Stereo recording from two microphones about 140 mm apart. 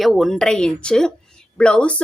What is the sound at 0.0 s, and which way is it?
Speech, centre (ahead or behind).